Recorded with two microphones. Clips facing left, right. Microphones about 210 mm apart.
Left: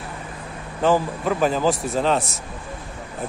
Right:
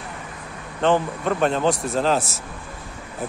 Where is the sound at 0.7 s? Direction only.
5° left (ahead or behind).